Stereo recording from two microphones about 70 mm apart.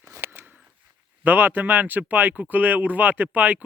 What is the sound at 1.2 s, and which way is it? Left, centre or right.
Speech, right.